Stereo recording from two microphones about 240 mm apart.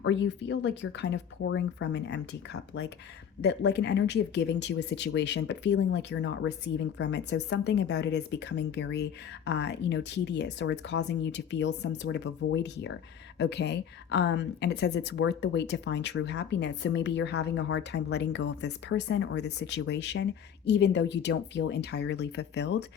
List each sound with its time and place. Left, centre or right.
0.0 s speech: left